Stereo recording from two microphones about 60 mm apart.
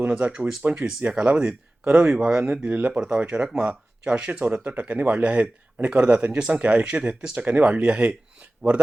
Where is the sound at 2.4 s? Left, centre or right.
Right.